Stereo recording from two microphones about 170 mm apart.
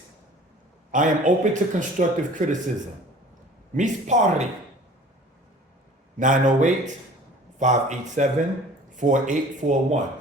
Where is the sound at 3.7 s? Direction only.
45° right (ahead or behind).